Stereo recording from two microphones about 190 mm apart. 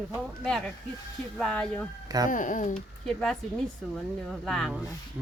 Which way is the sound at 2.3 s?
45° left (ahead or behind).